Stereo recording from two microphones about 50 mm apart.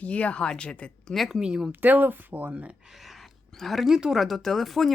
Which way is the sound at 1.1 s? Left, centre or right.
Centre.